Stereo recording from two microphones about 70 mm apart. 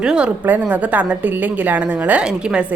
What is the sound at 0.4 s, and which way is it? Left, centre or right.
A woman's voice, right.